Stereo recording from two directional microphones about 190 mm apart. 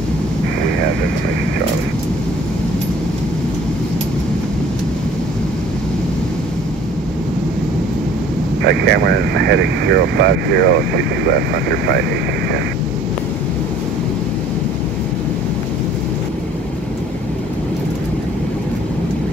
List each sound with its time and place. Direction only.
8.6 s speech: 65° right (ahead or behind)